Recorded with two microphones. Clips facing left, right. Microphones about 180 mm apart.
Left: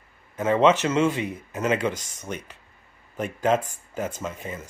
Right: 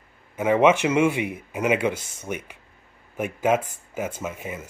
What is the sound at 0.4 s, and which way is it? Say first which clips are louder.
Speech: right 1 dB; 10° right (ahead or behind).